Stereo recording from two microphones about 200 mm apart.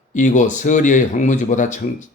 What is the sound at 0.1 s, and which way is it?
Speech, 40° left (ahead or behind).